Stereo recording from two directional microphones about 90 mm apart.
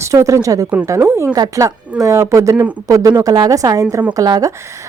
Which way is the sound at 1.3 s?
40° right (ahead or behind).